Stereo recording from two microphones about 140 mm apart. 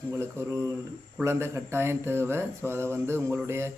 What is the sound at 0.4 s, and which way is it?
Speech, 20° right (ahead or behind).